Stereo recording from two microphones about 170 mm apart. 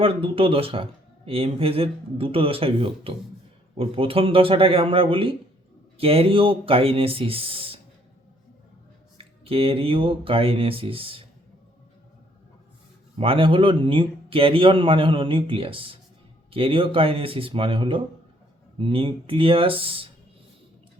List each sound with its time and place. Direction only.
0.0 s speech: 35° right (ahead or behind)
9.1 s speech: 35° right (ahead or behind)
13.1 s speech: 30° right (ahead or behind)